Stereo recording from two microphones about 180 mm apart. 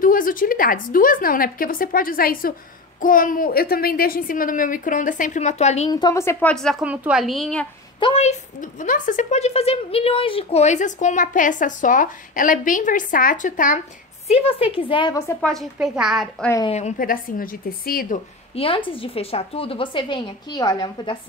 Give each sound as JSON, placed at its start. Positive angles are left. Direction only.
{"t": 0.0, "sound": "a woman's voice", "side_deg": 50}
{"t": 5.9, "sound": "a woman's voice", "side_deg": 20}
{"t": 6.5, "sound": "a woman's voice", "side_deg": 0}
{"t": 8.0, "sound": "a woman's voice", "side_deg": 35}
{"t": 14.2, "sound": "a woman's voice", "side_deg": 35}
{"t": 15.2, "sound": "a woman's voice", "side_deg": 5}
{"t": 16.6, "sound": "a woman's voice", "side_deg": 40}
{"t": 18.5, "sound": "a woman's voice", "side_deg": 30}